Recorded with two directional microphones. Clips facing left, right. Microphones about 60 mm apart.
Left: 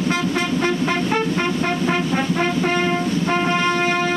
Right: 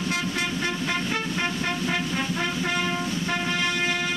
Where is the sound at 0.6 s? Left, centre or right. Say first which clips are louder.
Left 7 dB; left.